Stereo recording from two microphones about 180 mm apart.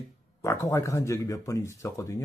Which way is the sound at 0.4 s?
15° left (ahead or behind).